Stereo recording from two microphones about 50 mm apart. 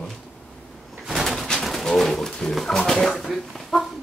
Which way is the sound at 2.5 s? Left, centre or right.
Centre.